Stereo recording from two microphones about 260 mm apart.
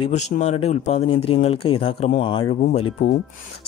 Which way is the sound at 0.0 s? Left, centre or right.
Left.